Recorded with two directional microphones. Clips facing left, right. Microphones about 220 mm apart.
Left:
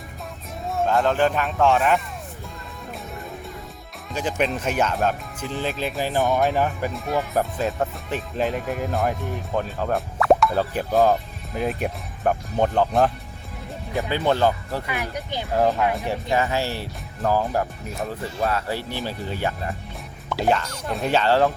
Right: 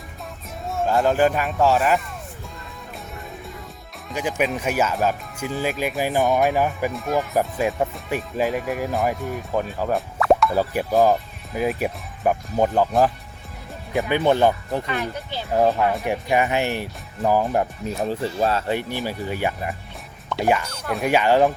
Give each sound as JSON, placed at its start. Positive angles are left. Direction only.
{"t": 0.7, "sound": "speech", "side_deg": -5}
{"t": 4.1, "sound": "speech", "side_deg": -10}
{"t": 6.2, "sound": "speech", "side_deg": 0}
{"t": 7.3, "sound": "speech", "side_deg": -10}
{"t": 14.1, "sound": "speech", "side_deg": -15}
{"t": 14.8, "sound": "speech", "side_deg": 15}
{"t": 15.5, "sound": "speech", "side_deg": -15}
{"t": 18.8, "sound": "speech", "side_deg": -15}